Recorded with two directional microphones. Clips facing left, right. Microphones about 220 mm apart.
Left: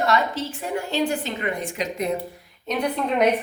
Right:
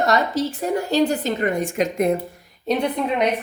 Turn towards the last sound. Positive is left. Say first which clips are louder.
# left 1 dB
turn(degrees=0)  # may be behind; listen again after turning